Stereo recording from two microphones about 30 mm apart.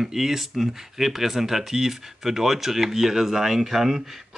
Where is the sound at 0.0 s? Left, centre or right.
Centre.